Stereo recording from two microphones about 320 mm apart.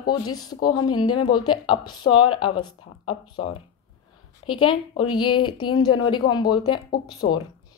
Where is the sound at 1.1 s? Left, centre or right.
Left.